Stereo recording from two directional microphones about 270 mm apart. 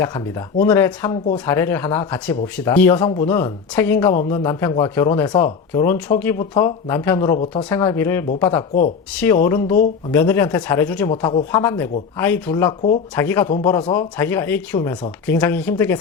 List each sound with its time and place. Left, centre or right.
0.0 s speech: centre